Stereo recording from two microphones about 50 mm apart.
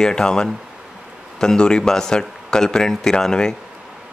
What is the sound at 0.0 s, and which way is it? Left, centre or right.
Speech, centre.